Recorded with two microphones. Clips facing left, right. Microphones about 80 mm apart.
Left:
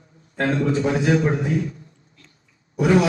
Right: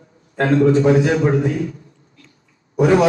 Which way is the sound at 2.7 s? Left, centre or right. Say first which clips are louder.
Right 4 dB; right.